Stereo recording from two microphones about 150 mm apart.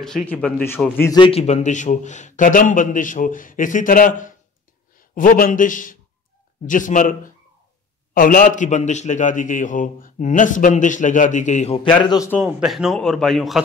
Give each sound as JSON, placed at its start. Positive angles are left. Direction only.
{"t": 0.0, "sound": "speech", "side_deg": 5}
{"t": 1.1, "sound": "a man's voice", "side_deg": 35}
{"t": 12.0, "sound": "a man's voice", "side_deg": 30}
{"t": 12.4, "sound": "a man's voice", "side_deg": -5}